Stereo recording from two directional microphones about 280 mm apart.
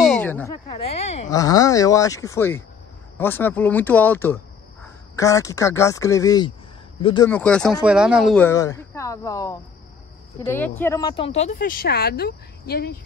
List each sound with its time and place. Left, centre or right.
0.0 s a sound: centre
0.8 s speech: left
1.3 s speech: centre
7.2 s speech: centre; by 11.5 s left
11.5 s speech: left